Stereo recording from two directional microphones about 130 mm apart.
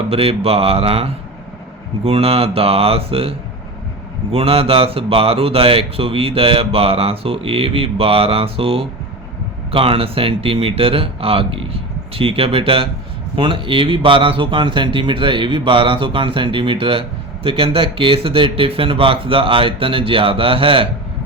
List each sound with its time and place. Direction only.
0.1 s speech: 50° right (ahead or behind)